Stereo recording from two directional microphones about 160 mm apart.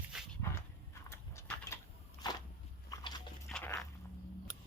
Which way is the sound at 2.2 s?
25° left (ahead or behind).